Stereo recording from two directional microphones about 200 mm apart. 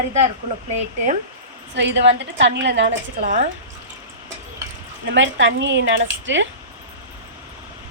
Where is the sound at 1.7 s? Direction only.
60° right (ahead or behind).